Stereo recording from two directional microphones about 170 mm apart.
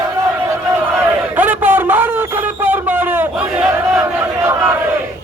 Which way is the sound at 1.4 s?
10° right (ahead or behind).